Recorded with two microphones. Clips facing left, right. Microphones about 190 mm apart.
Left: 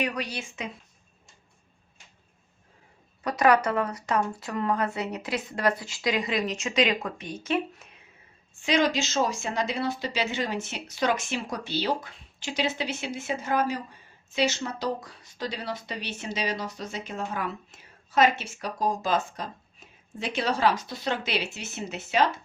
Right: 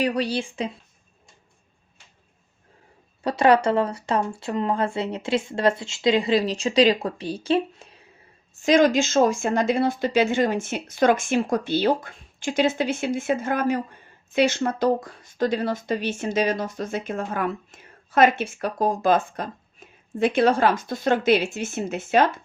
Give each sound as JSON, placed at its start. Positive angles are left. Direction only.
{"t": 0.0, "sound": "speech", "side_deg": -30}
{"t": 3.2, "sound": "speech", "side_deg": -30}
{"t": 8.5, "sound": "speech", "side_deg": -45}